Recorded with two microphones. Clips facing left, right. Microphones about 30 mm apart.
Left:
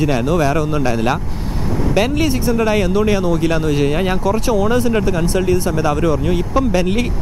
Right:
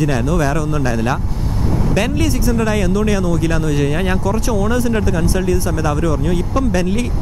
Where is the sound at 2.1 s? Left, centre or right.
Left.